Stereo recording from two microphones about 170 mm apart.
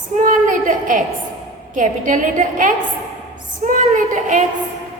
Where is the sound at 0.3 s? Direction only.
50° right (ahead or behind).